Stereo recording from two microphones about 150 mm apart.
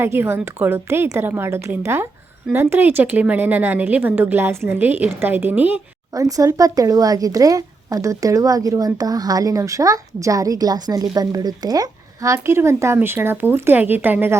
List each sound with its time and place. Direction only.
0.0 s a woman's voice: 15° right (ahead or behind)
6.1 s a woman's voice: 25° right (ahead or behind)